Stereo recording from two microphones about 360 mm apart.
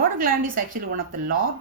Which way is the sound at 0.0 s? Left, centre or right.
Right.